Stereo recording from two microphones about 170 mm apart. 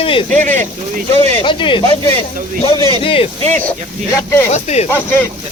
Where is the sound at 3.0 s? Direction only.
30° left (ahead or behind).